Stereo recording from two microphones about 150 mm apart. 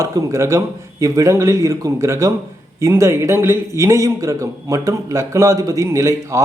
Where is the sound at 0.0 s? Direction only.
20° right (ahead or behind).